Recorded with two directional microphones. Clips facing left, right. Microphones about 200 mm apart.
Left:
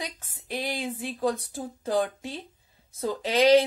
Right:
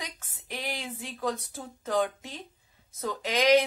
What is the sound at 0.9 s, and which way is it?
Speech, 30° left (ahead or behind).